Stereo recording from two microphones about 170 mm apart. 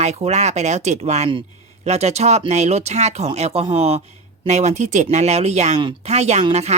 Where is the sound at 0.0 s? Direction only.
40° right (ahead or behind).